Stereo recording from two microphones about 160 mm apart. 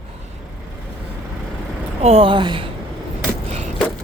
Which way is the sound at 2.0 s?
40° right (ahead or behind).